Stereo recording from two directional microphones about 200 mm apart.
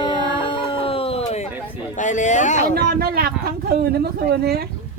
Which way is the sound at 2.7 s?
50° right (ahead or behind).